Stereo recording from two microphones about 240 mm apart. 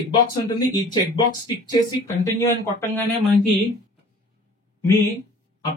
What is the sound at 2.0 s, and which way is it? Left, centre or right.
Speech, centre.